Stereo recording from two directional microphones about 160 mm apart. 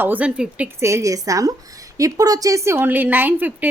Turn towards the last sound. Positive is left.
turn(degrees=-10)  # may be behind; listen again after turning